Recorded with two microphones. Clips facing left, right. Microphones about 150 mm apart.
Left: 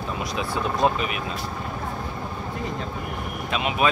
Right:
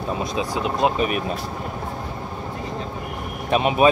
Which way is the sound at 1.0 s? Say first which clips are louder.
Right 5 dB; 45° right (ahead or behind).